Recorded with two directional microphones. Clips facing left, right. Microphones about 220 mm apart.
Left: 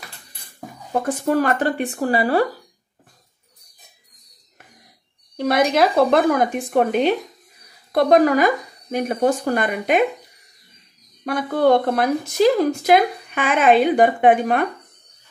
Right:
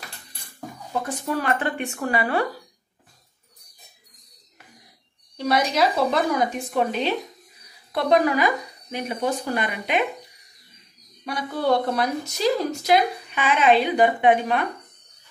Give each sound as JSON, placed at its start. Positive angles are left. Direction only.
{"t": 1.0, "sound": "speech", "side_deg": 45}
{"t": 5.4, "sound": "speech", "side_deg": 55}
{"t": 11.2, "sound": "speech", "side_deg": 50}